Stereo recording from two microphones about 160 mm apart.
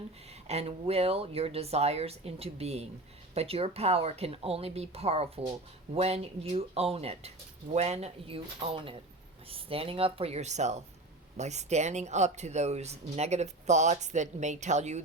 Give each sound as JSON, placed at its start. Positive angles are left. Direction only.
{"t": 0.4, "sound": "speech", "side_deg": -40}